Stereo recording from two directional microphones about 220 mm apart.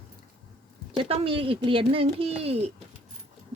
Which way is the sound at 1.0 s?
25° right (ahead or behind).